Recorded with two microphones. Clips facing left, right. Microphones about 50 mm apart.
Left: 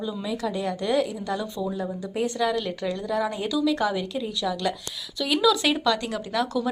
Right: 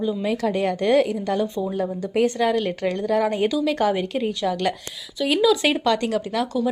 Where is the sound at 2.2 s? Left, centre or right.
Right.